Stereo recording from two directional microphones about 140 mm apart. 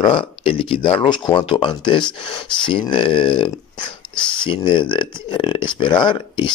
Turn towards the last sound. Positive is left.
turn(degrees=35)  # may be behind; listen again after turning